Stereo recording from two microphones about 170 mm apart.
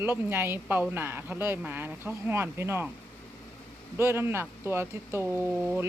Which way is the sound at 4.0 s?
15° right (ahead or behind).